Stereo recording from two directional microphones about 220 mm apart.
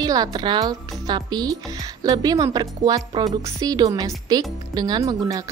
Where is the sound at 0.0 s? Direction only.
15° right (ahead or behind).